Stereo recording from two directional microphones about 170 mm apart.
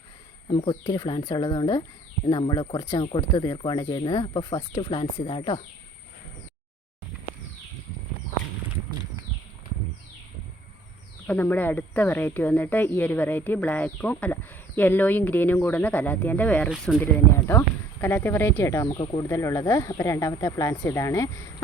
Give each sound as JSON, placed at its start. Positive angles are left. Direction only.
{"t": 0.4, "sound": "speech", "side_deg": 30}
{"t": 11.3, "sound": "speech", "side_deg": 10}
{"t": 16.6, "sound": "speech", "side_deg": 0}
{"t": 17.5, "sound": "speech", "side_deg": 15}